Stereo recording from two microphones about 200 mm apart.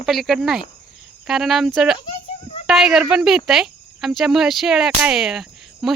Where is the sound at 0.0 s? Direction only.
Centre (ahead or behind).